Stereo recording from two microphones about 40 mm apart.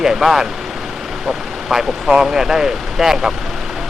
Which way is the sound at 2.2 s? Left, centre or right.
Centre.